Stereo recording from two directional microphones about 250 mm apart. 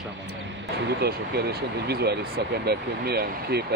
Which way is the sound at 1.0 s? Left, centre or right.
Right.